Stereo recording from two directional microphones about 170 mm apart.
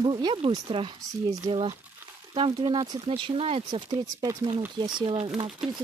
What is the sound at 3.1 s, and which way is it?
Speech, 35° right (ahead or behind).